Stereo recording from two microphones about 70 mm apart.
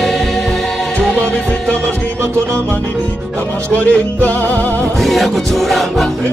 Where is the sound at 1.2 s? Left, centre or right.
Centre.